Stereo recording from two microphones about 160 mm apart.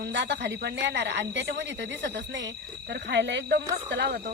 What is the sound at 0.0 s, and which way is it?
Speech, 90° right.